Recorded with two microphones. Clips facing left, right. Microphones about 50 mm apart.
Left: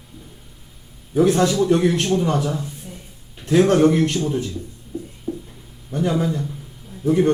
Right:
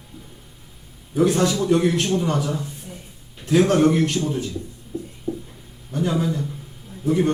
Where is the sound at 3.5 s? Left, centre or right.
Left.